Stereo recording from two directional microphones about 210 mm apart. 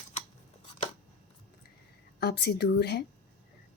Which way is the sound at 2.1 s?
50° left (ahead or behind).